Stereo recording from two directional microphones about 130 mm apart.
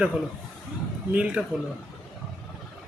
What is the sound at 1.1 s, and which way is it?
Speech, 10° right (ahead or behind).